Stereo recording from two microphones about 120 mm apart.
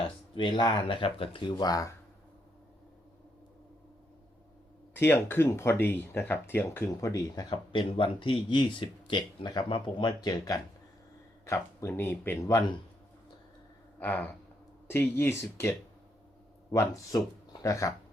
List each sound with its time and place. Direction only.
0.0 s speech: 40° left (ahead or behind)
4.9 s speech: 20° left (ahead or behind)
7.5 s speech: 45° left (ahead or behind); by 12.6 s 20° left (ahead or behind)
14.0 s speech: 15° left (ahead or behind)
16.7 s speech: 25° left (ahead or behind)